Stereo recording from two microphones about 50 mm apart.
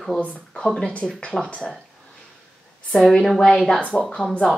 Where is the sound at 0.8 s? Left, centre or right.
Left.